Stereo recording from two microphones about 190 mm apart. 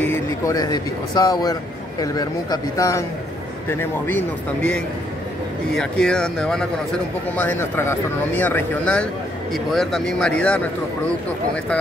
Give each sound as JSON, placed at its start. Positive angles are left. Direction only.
{"t": 0.0, "sound": "a man's voice", "side_deg": 15}